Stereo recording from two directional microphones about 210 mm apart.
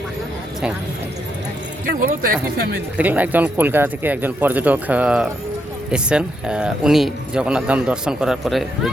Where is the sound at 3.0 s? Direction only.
10° right (ahead or behind).